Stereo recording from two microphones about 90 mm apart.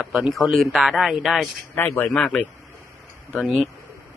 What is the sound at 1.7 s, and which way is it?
Speech, 25° left (ahead or behind).